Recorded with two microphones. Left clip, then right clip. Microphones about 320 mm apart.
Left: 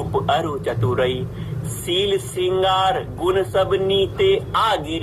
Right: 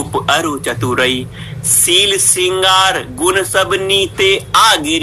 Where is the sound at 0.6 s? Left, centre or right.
Right.